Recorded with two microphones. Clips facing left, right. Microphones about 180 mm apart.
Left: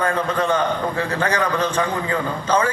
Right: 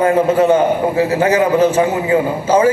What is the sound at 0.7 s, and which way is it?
A man's voice, 10° right (ahead or behind).